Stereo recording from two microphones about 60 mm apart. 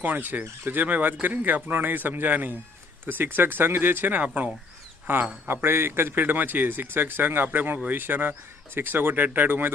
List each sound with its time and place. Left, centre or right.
0.0 s speech: right
5.0 s speech: right
5.6 s speech: right